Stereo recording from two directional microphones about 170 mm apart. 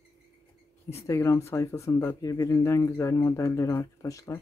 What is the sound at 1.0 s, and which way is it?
Speech, 15° left (ahead or behind).